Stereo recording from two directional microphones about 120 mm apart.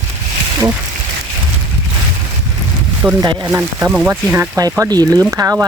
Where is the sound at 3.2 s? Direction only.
35° right (ahead or behind).